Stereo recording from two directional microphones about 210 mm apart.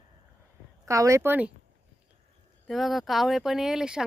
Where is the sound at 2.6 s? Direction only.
Centre (ahead or behind).